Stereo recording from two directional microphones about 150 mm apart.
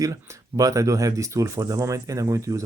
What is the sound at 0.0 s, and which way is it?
Speech, 20° right (ahead or behind).